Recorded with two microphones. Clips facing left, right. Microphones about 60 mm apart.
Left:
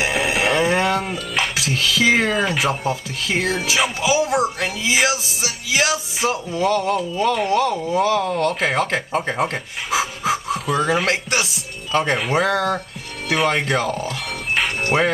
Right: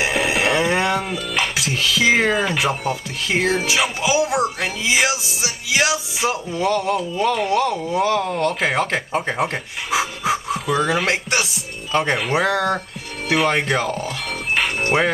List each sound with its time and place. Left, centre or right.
0.0 s music: centre
1.6 s speech: centre
14.8 s music: centre